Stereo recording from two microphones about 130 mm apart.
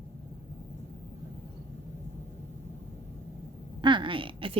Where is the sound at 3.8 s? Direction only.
35° right (ahead or behind).